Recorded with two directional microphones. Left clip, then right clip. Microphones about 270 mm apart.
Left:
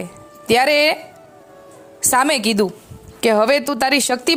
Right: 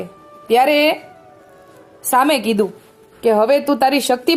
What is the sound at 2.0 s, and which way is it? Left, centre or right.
Speech, left.